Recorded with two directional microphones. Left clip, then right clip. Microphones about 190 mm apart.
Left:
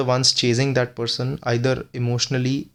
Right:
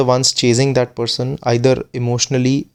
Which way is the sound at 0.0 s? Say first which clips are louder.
Right 5 dB; 25° right (ahead or behind).